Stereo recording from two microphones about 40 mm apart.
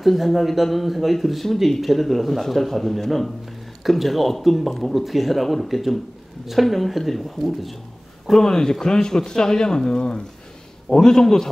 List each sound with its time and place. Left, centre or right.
0.0 s speech: centre
8.4 s speech: centre